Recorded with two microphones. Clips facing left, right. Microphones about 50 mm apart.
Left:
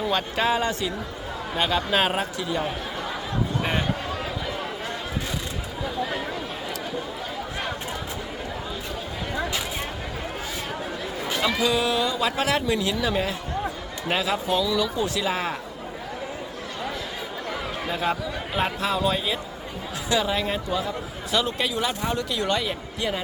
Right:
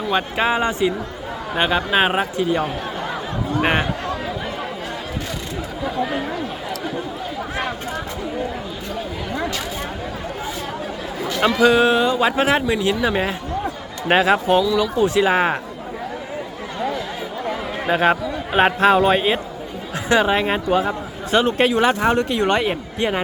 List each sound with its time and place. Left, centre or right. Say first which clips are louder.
0.1 s speech: right 6 dB; right
3.6 s speech: right 10 dB; right
11.6 s speech: right 10 dB; right
14.1 s speech: right 9 dB; right
14.6 s speech: right 5 dB; centre
14.9 s speech: right 9 dB; right
17.8 s a man's voice: right 10 dB; right